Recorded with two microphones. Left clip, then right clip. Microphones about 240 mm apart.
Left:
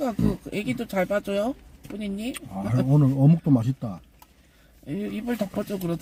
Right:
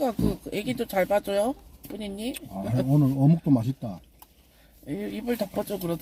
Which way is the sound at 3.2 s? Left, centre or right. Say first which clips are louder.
Left 1 dB; left.